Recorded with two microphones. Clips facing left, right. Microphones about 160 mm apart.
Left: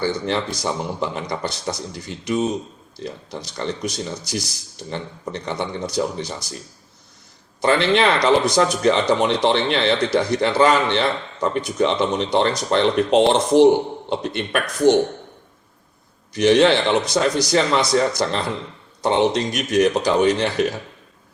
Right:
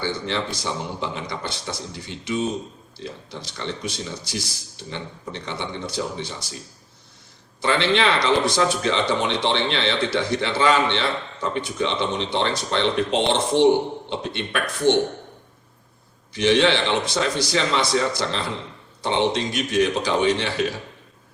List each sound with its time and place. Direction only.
0.0 s speech: 45° left (ahead or behind)
7.6 s speech: 45° left (ahead or behind)
16.3 s speech: 45° left (ahead or behind)